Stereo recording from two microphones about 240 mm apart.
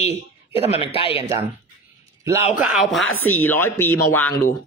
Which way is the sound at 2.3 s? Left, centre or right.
Centre.